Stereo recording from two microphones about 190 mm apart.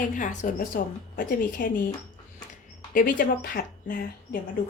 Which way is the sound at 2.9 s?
45° left (ahead or behind).